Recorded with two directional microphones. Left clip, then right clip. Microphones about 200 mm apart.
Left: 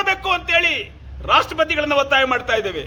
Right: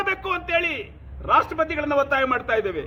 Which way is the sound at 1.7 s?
20° left (ahead or behind).